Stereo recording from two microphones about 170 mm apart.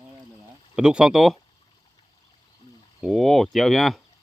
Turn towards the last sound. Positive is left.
turn(degrees=0)  # may be behind; listen again after turning